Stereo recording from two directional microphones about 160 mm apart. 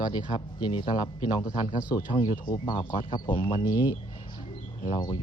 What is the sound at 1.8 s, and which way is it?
Speech, 10° right (ahead or behind).